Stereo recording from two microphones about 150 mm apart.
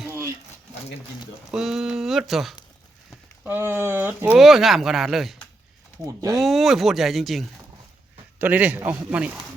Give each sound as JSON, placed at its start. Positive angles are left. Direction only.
{"t": 1.5, "sound": "speech", "side_deg": 0}
{"t": 3.4, "sound": "speech", "side_deg": -15}
{"t": 4.4, "sound": "speech", "side_deg": 0}
{"t": 6.1, "sound": "speech", "side_deg": -20}
{"t": 6.4, "sound": "speech", "side_deg": 0}
{"t": 8.4, "sound": "speech", "side_deg": -10}